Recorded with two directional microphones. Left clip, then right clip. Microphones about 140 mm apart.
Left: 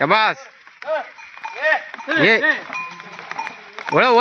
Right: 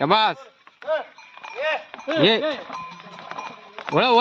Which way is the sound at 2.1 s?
35° right (ahead or behind).